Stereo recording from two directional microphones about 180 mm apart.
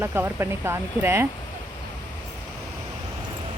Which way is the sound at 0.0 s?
10° right (ahead or behind).